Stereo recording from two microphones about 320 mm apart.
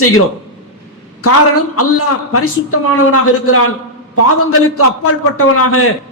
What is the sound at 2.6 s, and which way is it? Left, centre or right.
Speech, left.